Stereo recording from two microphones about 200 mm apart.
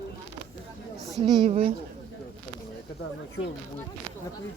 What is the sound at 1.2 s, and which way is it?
Speech, 25° right (ahead or behind).